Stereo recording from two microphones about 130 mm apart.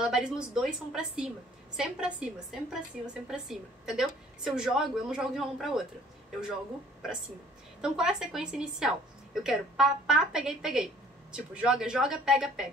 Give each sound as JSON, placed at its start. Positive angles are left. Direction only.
{"t": 0.0, "sound": "a woman's voice", "side_deg": -5}
{"t": 7.8, "sound": "a woman's voice", "side_deg": -5}